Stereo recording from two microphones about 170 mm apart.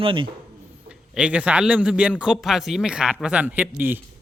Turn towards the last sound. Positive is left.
turn(degrees=-10)  # may be behind; listen again after turning